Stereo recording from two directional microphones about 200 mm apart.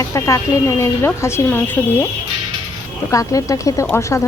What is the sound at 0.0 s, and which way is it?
Speech, 15° left (ahead or behind).